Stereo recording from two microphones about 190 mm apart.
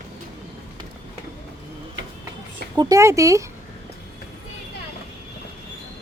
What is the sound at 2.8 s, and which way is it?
Speech, 15° right (ahead or behind).